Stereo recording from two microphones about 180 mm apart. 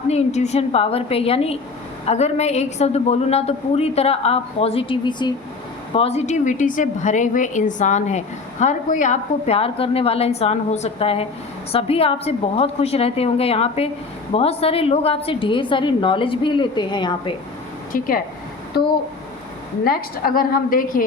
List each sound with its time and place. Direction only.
0.1 s a woman's voice: 40° left (ahead or behind)
17.9 s a woman's voice: 50° left (ahead or behind)